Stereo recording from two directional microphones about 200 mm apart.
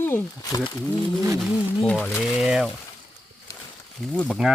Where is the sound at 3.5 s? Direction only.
15° left (ahead or behind).